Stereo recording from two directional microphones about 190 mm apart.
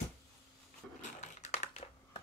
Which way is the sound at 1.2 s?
35° left (ahead or behind).